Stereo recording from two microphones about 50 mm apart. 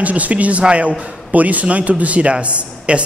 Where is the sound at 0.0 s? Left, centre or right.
Right.